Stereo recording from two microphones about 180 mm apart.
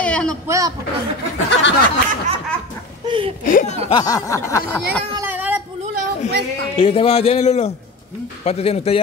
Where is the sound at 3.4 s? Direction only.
50° left (ahead or behind).